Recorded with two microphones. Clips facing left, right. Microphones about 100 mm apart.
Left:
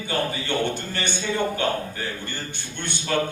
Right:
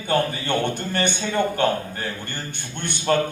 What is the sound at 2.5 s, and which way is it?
Speech, 50° right (ahead or behind).